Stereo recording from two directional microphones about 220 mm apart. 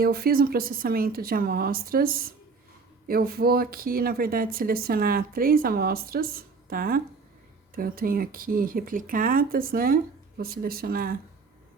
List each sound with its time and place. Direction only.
0.0 s speech: 45° right (ahead or behind)